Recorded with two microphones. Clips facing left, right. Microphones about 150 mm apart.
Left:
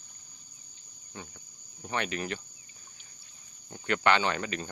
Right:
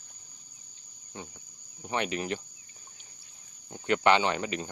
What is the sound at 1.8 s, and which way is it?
Speech, 20° right (ahead or behind).